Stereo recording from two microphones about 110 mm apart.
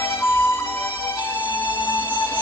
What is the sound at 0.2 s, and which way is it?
Music, 20° left (ahead or behind).